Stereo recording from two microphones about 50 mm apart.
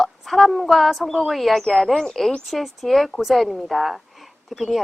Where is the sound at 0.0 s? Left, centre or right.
Centre.